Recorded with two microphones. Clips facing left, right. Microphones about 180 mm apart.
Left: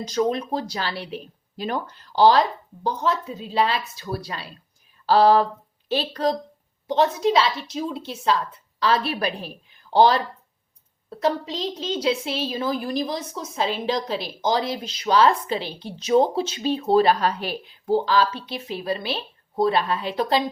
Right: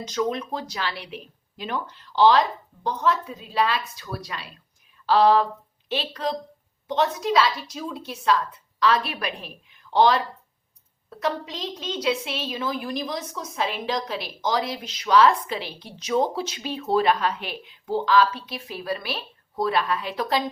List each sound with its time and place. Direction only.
0.0 s a woman's voice: 35° left (ahead or behind)
2.8 s a woman's voice: 30° left (ahead or behind)